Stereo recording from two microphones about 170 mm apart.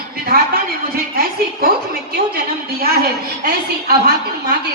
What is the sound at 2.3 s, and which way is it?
A woman's voice, 65° right (ahead or behind).